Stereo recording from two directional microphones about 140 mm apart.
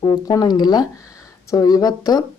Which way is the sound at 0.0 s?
30° left (ahead or behind).